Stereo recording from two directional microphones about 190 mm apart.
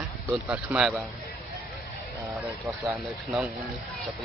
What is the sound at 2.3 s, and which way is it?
Speech, centre (ahead or behind).